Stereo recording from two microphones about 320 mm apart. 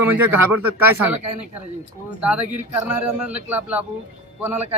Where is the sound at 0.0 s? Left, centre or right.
Centre.